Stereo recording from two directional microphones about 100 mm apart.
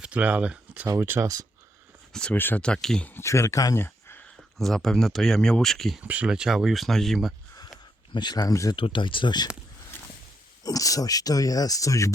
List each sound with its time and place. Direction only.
0.0 s speech: 10° right (ahead or behind)
0.9 s speech: 25° right (ahead or behind)
2.1 s speech: 10° left (ahead or behind)
3.2 s speech: 30° left (ahead or behind)
4.5 s speech: 5° left (ahead or behind)
6.0 s speech: 15° right (ahead or behind)
8.1 s speech: 45° left (ahead or behind)
8.7 s speech: 60° left (ahead or behind)
10.6 s speech: 35° left (ahead or behind)